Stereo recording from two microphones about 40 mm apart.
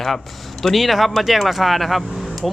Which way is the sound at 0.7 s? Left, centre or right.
Centre.